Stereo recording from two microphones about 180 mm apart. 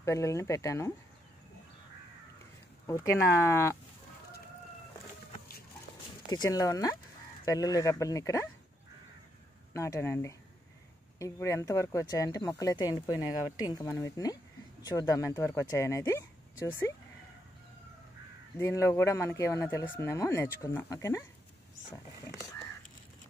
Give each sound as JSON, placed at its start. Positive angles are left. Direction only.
{"t": 0.0, "sound": "speech", "side_deg": 15}
{"t": 2.9, "sound": "speech", "side_deg": 15}
{"t": 6.3, "sound": "speech", "side_deg": 20}
{"t": 9.8, "sound": "speech", "side_deg": 15}
{"t": 18.6, "sound": "speech", "side_deg": 15}